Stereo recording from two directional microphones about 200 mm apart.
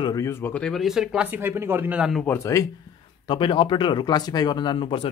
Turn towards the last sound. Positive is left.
turn(degrees=25)  # may be behind; listen again after turning